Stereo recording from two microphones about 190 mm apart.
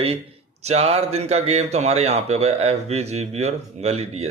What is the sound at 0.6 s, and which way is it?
A man's voice, 35° right (ahead or behind).